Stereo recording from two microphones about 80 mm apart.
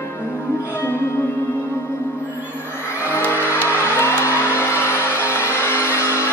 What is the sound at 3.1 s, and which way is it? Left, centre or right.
Music, left.